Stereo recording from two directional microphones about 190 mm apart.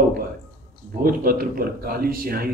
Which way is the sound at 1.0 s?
50° right (ahead or behind).